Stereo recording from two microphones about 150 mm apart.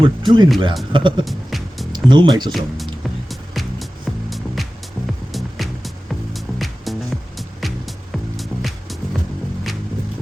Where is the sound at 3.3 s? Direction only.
Centre (ahead or behind).